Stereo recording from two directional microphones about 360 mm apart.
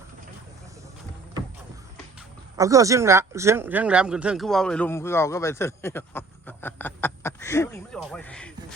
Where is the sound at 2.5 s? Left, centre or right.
Centre.